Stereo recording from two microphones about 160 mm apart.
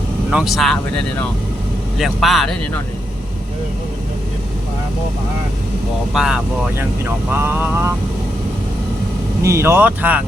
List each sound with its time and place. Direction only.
0.3 s speech: 5° right (ahead or behind)
2.0 s speech: centre (ahead or behind)
6.1 s speech: 5° right (ahead or behind)
6.7 s speech: 15° right (ahead or behind)
9.4 s speech: 15° right (ahead or behind)